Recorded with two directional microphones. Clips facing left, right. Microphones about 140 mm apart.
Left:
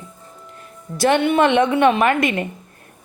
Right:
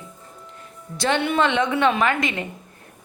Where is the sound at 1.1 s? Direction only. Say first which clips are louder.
Left 5 dB; 50° left (ahead or behind).